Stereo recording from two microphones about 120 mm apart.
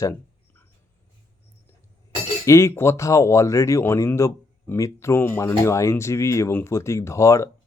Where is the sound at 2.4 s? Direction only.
25° left (ahead or behind).